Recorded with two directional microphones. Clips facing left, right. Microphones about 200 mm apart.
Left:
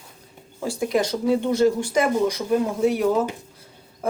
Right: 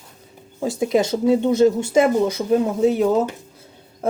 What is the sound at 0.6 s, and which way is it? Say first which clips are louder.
Speech: right 4 dB; 20° right (ahead or behind).